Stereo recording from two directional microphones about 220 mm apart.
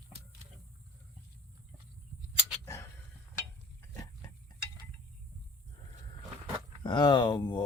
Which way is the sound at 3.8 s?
15° left (ahead or behind).